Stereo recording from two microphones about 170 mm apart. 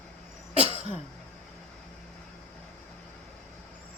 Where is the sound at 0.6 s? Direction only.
35° right (ahead or behind).